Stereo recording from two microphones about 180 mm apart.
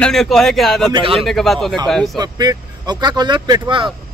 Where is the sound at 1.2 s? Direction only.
Centre (ahead or behind).